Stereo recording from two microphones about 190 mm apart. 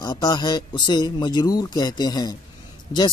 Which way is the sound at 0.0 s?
20° left (ahead or behind).